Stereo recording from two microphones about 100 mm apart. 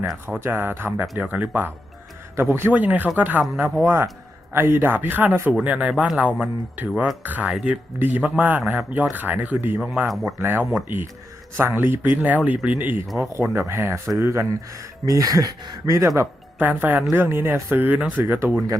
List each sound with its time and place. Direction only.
0.4 s speech: 25° right (ahead or behind)
1.0 s speech: 5° right (ahead or behind)
1.3 s a man's voice: 20° right (ahead or behind)
10.1 s speech: centre (ahead or behind)
10.3 s speech: 20° right (ahead or behind)
13.1 s speech: 25° right (ahead or behind)
16.0 s speech: 25° right (ahead or behind)